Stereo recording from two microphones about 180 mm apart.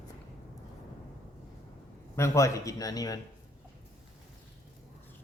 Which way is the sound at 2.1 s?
15° left (ahead or behind).